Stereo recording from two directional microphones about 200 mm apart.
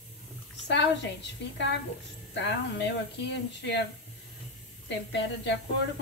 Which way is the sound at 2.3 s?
60° left (ahead or behind).